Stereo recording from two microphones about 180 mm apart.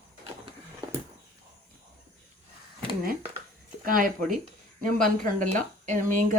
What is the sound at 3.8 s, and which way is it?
Speech, 50° right (ahead or behind).